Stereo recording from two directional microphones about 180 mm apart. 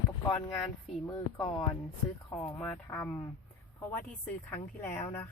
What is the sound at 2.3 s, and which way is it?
Speech, 10° left (ahead or behind).